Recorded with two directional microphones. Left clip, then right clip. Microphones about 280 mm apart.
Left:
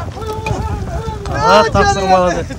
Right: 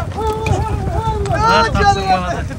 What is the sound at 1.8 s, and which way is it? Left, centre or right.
Speech, left.